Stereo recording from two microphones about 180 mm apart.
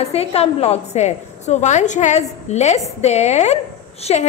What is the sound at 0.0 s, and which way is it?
A woman's voice, 35° left (ahead or behind).